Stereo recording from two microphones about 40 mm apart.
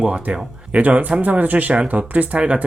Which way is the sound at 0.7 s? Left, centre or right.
Right.